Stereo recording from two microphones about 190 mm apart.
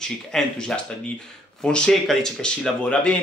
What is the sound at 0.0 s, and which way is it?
Speech, 5° left (ahead or behind).